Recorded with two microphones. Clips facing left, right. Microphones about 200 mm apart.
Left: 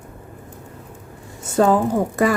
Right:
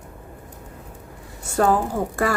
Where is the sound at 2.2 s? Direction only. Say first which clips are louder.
Left 4 dB; 20° left (ahead or behind).